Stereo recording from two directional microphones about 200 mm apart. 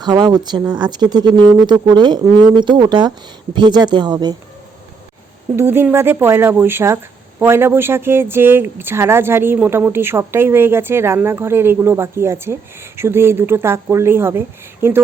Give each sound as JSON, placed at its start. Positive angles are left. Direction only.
{"t": 0.0, "sound": "speech", "side_deg": -20}
{"t": 5.5, "sound": "speech", "side_deg": -10}